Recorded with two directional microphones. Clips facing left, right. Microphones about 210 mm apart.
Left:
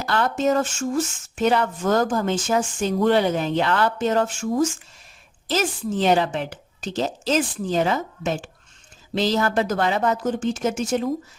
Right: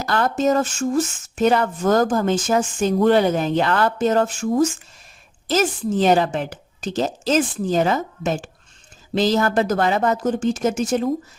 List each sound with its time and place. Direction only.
0.0 s speech: 40° right (ahead or behind)